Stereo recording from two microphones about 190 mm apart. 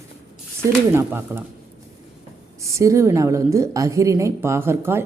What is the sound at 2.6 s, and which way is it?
A woman's voice, 15° right (ahead or behind).